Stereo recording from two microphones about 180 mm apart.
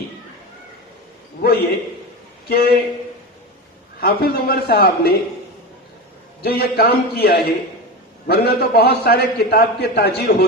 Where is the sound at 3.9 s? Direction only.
60° left (ahead or behind).